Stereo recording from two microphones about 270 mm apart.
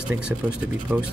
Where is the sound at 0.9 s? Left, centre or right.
Centre.